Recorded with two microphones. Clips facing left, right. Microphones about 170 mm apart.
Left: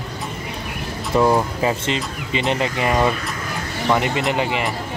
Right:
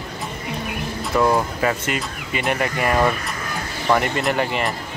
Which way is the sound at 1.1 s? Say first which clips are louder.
Left 2 dB; 25° left (ahead or behind).